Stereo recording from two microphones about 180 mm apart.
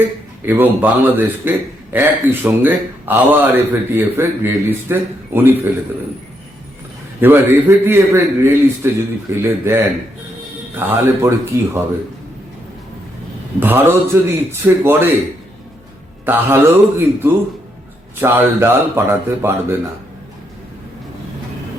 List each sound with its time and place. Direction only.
0.0 s speech: 10° right (ahead or behind)
7.2 s speech: 10° right (ahead or behind)
13.6 s speech: 10° right (ahead or behind)
16.2 s speech: 10° right (ahead or behind)